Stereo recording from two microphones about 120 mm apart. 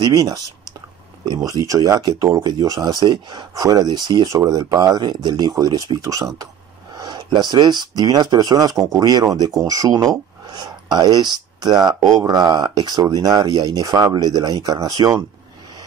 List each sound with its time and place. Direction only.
0.0 s speech: 35° right (ahead or behind)